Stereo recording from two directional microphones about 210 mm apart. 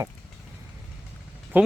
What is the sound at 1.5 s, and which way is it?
Speech, 10° right (ahead or behind).